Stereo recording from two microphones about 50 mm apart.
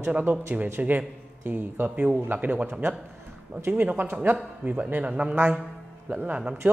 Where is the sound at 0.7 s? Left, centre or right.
Right.